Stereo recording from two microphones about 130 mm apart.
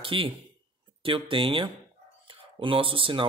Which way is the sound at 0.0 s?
45° right (ahead or behind).